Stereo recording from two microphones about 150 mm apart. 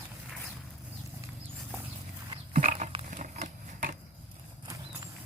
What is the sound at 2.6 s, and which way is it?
Pig, 60° right (ahead or behind).